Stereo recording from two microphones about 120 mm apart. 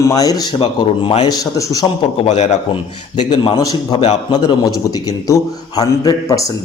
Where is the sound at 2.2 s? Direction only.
65° left (ahead or behind).